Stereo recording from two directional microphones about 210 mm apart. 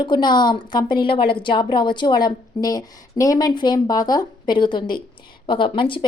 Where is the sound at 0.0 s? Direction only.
20° left (ahead or behind).